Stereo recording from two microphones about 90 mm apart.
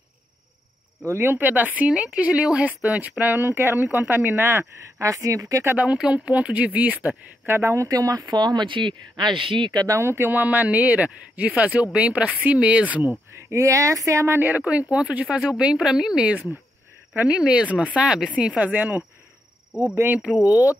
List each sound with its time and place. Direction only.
1.0 s speech: 25° right (ahead or behind)
5.7 s speech: 15° right (ahead or behind); by 9.7 s 70° right (ahead or behind)
9.7 s speech: 50° right (ahead or behind)
9.9 s speech: 25° right (ahead or behind)
13.5 s speech: 35° right (ahead or behind); by 19.0 s 20° right (ahead or behind)
20.2 s speech: 5° right (ahead or behind)
20.4 s speech: 20° right (ahead or behind)